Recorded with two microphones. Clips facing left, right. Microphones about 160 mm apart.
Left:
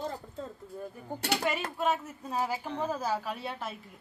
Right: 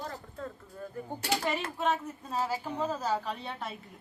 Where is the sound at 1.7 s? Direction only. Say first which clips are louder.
Even; 5° left (ahead or behind).